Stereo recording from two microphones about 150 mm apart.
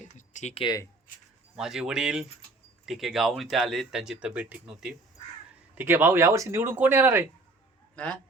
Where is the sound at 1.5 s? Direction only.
5° right (ahead or behind).